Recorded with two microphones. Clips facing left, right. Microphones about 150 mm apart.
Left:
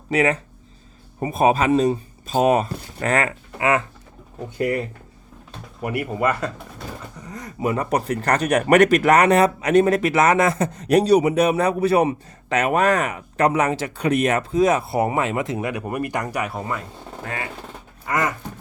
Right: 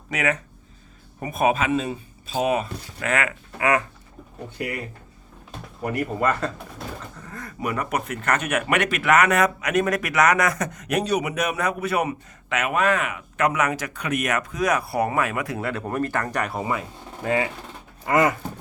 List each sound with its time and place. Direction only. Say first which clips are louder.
0.1 s speech: left 6 dB; 30° left (ahead or behind)
5.8 s speech: left 1 dB; 10° left (ahead or behind)
16.6 s speech: right 1 dB; 5° right (ahead or behind)
18.1 s a sound: right 4 dB; 20° right (ahead or behind)